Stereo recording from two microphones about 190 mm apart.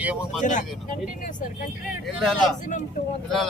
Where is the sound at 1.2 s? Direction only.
45° left (ahead or behind).